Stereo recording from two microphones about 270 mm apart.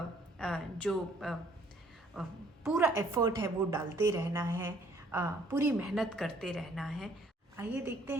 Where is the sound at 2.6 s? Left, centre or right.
Centre.